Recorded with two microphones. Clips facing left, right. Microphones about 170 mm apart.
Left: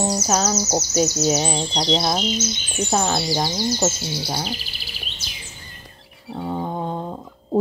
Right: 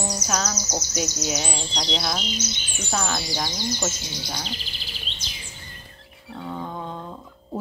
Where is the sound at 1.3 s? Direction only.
40° left (ahead or behind).